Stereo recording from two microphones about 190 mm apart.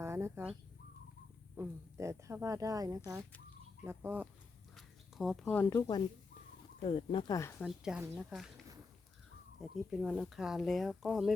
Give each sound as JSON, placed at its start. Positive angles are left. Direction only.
{"t": 0.0, "sound": "bird", "side_deg": -15}
{"t": 1.5, "sound": "speech", "side_deg": -15}
{"t": 6.8, "sound": "speech", "side_deg": 30}
{"t": 7.6, "sound": "speech", "side_deg": 0}